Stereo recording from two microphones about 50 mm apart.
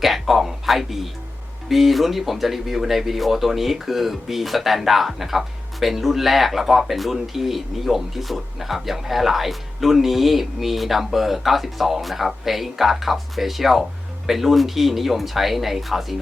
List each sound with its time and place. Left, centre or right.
0.0 s speech: centre